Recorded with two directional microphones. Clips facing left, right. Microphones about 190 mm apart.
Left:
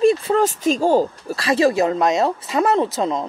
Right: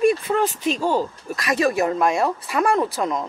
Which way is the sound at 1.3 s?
30° left (ahead or behind).